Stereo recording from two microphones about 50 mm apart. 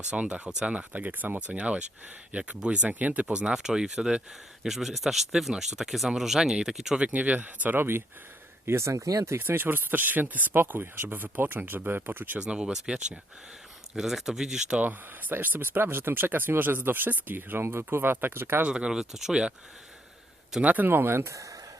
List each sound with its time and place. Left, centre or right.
0.1 s speech: right
3.4 s speech: centre
7.1 s speech: right
7.8 s speech: right
8.6 s speech: right
9.4 s speech: right
12.4 s speech: centre
14.8 s speech: right
18.7 s speech: centre
18.9 s speech: centre
19.3 s speech: centre
20.6 s speech: right
21.3 s speech: right